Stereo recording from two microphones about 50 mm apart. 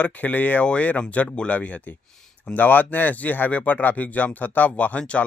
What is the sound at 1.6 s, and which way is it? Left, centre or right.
A man's voice, left.